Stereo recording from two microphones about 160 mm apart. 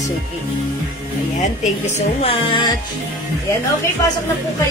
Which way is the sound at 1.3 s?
45° left (ahead or behind).